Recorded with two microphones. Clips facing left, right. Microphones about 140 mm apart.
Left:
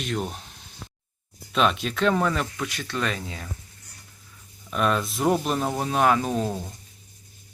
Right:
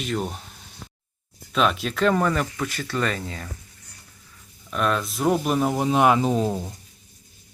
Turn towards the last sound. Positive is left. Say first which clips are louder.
# right 4 dB
turn(degrees=-15)  # may be behind; listen again after turning